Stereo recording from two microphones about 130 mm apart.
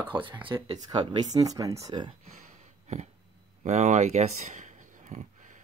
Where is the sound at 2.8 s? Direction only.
60° right (ahead or behind).